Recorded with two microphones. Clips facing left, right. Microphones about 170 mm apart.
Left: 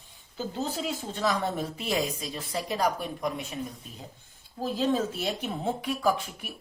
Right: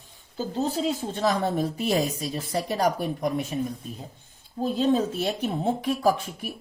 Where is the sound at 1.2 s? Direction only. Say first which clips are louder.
Right 4 dB; 40° right (ahead or behind).